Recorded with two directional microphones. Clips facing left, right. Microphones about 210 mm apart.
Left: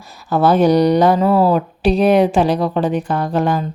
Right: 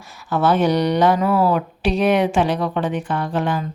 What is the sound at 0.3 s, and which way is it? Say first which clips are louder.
Speech: left 4 dB; 40° left (ahead or behind).